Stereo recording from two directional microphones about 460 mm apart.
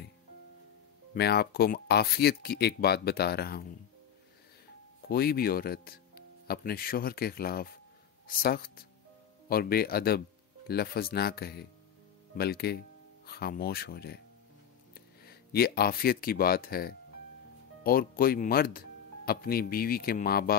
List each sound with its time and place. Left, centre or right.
1.1 s speech: left
5.0 s speech: centre